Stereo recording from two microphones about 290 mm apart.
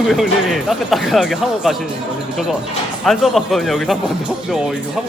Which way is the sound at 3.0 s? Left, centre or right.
Centre.